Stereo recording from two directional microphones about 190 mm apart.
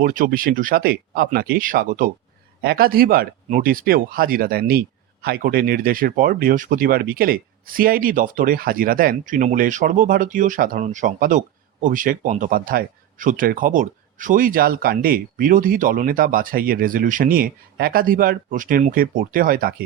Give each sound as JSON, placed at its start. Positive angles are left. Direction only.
{"t": 0.0, "sound": "speech", "side_deg": -45}